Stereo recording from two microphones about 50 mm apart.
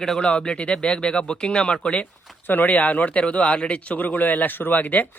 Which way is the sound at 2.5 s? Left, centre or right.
Left.